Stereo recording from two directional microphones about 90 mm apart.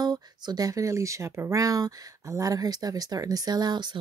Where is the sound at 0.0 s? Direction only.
50° right (ahead or behind).